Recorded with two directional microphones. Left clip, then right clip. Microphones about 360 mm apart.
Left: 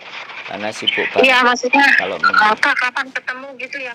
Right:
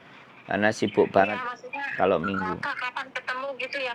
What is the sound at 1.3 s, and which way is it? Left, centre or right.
Speech, left.